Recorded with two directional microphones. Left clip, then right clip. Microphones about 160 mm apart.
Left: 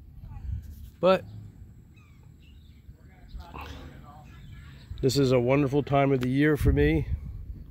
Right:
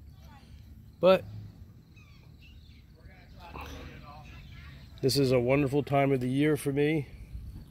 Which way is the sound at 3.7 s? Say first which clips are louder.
Right 1 dB; 30° right (ahead or behind).